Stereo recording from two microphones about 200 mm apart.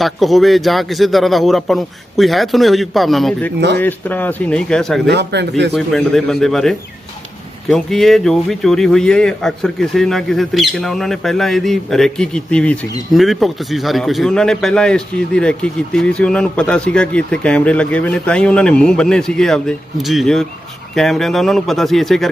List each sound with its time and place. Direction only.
0.0 s a man's voice: centre (ahead or behind)
5.0 s a man's voice: 60° right (ahead or behind)
5.7 s a man's voice: centre (ahead or behind)